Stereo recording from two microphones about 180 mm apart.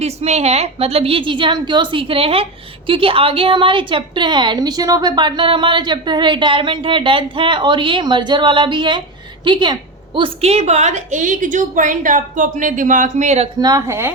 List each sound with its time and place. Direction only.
0.0 s a woman's voice: 35° right (ahead or behind)
13.6 s a woman's voice: 20° right (ahead or behind)